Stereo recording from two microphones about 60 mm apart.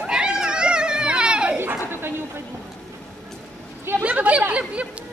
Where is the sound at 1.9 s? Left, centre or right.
Right.